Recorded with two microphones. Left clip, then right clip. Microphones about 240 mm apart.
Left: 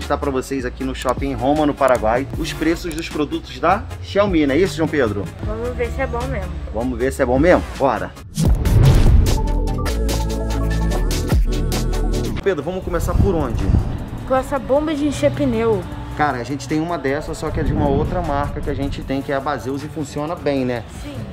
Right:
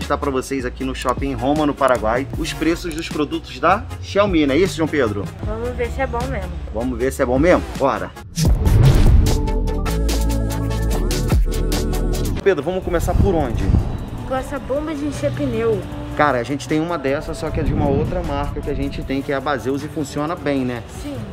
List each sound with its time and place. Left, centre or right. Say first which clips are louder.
0.1 s speech: even; centre
7.0 s speech: left 1 dB; centre
8.7 s music: even; centre
12.4 s speech: right 4 dB; centre
14.3 s speech: left 5 dB; left
16.2 s speech: right 3 dB; centre